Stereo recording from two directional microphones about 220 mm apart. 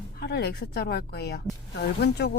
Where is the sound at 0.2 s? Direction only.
50° left (ahead or behind).